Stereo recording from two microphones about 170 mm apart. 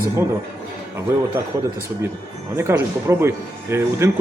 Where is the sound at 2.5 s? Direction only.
15° right (ahead or behind).